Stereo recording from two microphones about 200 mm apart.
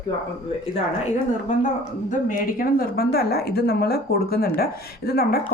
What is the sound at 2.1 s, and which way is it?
Speech, 40° left (ahead or behind).